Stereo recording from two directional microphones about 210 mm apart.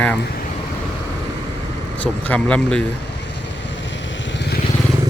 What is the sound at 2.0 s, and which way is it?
Speech, 5° left (ahead or behind).